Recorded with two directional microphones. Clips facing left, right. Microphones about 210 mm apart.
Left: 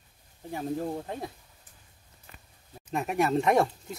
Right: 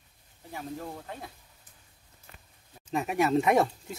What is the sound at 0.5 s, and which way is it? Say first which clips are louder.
Speech: left 7 dB; 35° left (ahead or behind).